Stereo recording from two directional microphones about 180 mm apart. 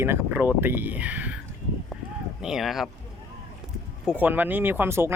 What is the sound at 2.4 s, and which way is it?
Speech, centre (ahead or behind).